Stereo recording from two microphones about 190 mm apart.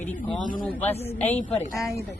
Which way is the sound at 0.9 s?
35° left (ahead or behind).